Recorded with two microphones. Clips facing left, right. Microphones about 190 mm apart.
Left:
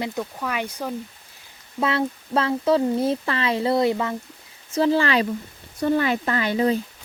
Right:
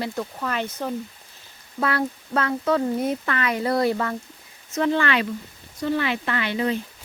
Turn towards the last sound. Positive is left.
turn(degrees=35)  # may be behind; listen again after turning